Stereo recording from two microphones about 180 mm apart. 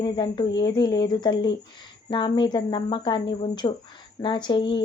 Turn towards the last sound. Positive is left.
turn(degrees=25)  # may be behind; listen again after turning